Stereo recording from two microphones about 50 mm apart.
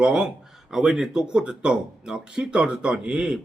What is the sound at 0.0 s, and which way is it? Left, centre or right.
A man's voice, centre.